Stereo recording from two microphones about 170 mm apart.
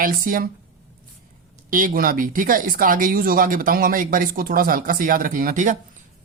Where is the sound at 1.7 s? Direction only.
55° right (ahead or behind).